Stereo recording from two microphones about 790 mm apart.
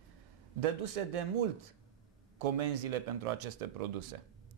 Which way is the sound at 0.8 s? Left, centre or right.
Right.